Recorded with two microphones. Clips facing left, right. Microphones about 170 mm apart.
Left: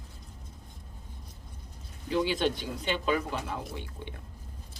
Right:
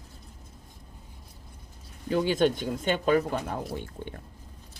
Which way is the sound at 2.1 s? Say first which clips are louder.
Right 4 dB; 45° right (ahead or behind).